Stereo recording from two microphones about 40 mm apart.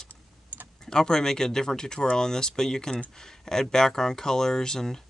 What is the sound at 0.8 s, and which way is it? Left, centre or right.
Speech, centre.